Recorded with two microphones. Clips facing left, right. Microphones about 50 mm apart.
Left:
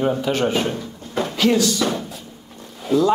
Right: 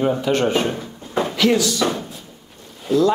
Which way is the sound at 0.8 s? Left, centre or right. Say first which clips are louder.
Right 2 dB; right.